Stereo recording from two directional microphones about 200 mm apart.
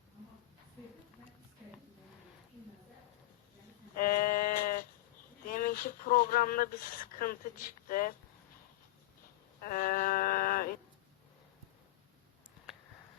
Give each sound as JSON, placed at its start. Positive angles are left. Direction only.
{"t": 3.9, "sound": "sheep", "side_deg": 45}
{"t": 5.5, "sound": "speech", "side_deg": 45}
{"t": 9.6, "sound": "a sound", "side_deg": 45}